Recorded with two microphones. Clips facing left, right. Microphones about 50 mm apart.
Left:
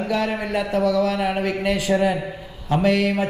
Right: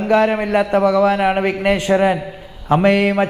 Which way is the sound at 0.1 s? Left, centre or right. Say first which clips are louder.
Right 10 dB; right.